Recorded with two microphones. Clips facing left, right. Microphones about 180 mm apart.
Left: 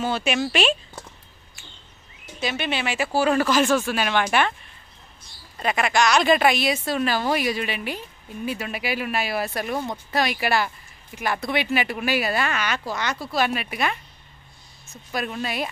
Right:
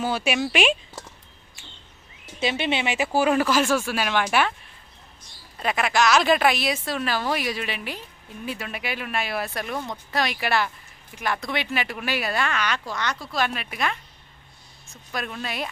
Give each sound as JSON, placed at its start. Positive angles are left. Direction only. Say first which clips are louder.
{"t": 0.0, "sound": "speech", "louder": "left 1 dB", "side_deg": -10}
{"t": 2.4, "sound": "speech", "louder": "right 2 dB", "side_deg": -25}
{"t": 5.6, "sound": "speech", "louder": "left 1 dB", "side_deg": 0}